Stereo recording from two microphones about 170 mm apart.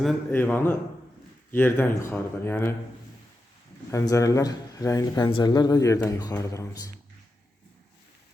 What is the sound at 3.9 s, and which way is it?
Speech, 20° left (ahead or behind).